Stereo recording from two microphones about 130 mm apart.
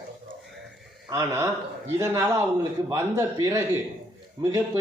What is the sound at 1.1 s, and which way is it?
A man's voice, 25° right (ahead or behind).